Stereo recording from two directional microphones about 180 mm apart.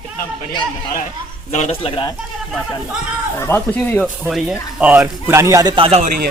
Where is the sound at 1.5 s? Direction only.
40° left (ahead or behind).